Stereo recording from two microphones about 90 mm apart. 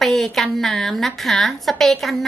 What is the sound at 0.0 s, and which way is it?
A woman's voice, 5° left (ahead or behind).